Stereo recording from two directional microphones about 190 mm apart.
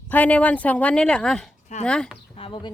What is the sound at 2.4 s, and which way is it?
Speech, 25° left (ahead or behind).